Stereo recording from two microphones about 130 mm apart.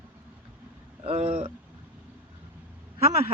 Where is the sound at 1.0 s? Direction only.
50° right (ahead or behind).